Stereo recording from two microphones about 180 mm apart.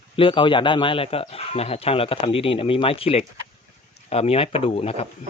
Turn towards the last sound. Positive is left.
turn(degrees=35)  # may be behind; listen again after turning